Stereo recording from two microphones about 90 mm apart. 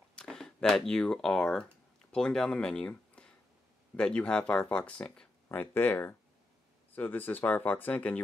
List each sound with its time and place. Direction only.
0.1 s speech: 10° left (ahead or behind)
5.5 s speech: 25° left (ahead or behind)